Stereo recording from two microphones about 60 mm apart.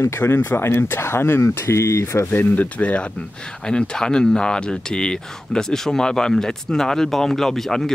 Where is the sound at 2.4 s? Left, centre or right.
Left; by 7.9 s centre.